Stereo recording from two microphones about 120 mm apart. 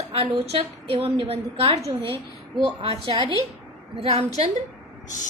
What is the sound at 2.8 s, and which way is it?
A woman's voice, 50° right (ahead or behind).